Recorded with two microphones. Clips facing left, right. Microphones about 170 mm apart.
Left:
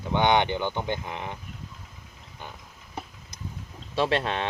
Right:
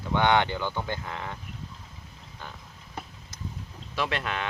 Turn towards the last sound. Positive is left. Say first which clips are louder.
# left 5 dB
turn(degrees=30)  # may be behind; listen again after turning